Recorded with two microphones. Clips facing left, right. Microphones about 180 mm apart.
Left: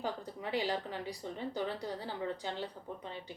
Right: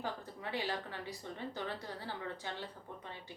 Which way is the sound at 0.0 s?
15° left (ahead or behind).